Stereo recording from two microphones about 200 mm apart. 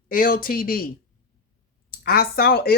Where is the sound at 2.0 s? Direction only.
50° left (ahead or behind).